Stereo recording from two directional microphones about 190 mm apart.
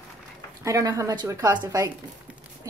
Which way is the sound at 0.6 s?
15° right (ahead or behind).